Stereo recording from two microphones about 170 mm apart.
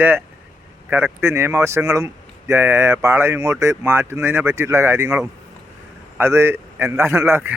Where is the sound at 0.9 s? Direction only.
10° right (ahead or behind).